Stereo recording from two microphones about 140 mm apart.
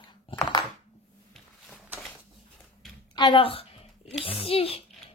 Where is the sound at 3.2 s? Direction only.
35° left (ahead or behind).